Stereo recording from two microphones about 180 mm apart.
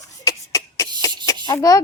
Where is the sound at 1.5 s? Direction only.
20° left (ahead or behind).